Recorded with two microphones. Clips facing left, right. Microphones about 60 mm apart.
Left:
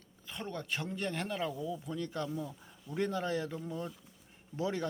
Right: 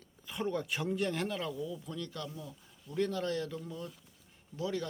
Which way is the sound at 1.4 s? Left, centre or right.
Centre.